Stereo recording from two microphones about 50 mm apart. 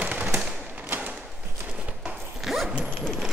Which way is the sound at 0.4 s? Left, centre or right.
Centre.